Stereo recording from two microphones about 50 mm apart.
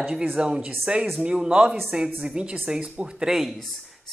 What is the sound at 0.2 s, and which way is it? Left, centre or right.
Speech, right.